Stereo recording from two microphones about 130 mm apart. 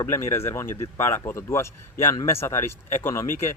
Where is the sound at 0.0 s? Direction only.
20° left (ahead or behind).